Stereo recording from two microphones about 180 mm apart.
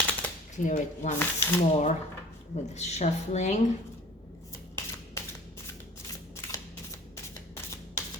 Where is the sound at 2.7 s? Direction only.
40° left (ahead or behind).